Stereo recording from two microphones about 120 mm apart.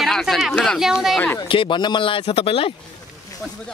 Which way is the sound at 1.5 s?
45° left (ahead or behind).